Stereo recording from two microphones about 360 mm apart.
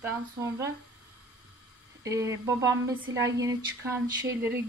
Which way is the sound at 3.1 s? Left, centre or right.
Right.